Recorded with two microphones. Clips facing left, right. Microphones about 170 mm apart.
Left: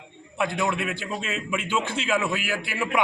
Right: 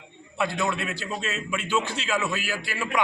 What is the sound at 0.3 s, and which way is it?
A man's voice, 10° left (ahead or behind).